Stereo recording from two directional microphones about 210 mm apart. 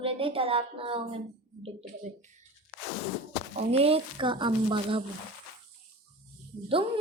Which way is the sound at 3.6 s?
30° right (ahead or behind).